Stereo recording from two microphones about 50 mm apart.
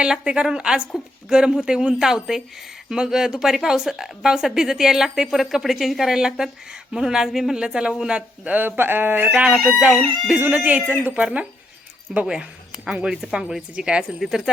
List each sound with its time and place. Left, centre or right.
0.0 s a woman's voice: centre
8.4 s speech: right
9.3 s a woman's voice: right
9.6 s a woman's voice: centre
10.5 s speech: right
11.1 s a woman's voice: right
12.2 s a woman's voice: centre
14.2 s a woman's voice: centre